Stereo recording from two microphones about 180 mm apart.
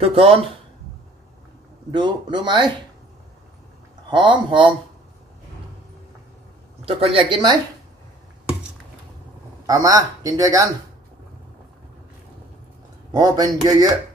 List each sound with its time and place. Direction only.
0.0 s speech: 30° right (ahead or behind)
1.9 s speech: 25° right (ahead or behind)
4.1 s speech: 25° right (ahead or behind)
6.9 s speech: 30° right (ahead or behind)
9.7 s speech: 20° right (ahead or behind)
13.1 s speech: 20° right (ahead or behind)